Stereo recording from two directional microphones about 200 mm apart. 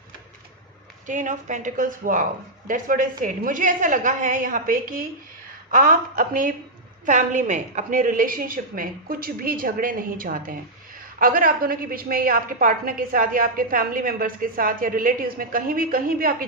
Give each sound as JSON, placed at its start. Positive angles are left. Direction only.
{"t": 1.0, "sound": "a woman's voice", "side_deg": -40}